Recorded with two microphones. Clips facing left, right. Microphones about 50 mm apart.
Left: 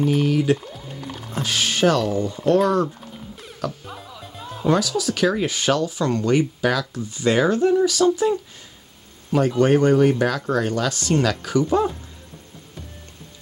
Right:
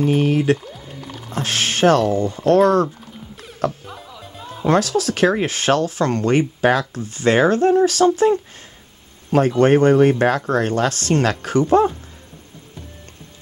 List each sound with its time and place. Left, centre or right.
0.0 s speech: right
1.0 s music: centre
1.4 s speech: right
3.8 s music: centre
4.6 s speech: right
7.0 s speech: right
9.6 s speech: right